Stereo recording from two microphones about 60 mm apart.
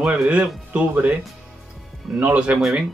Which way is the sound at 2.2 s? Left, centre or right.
Right.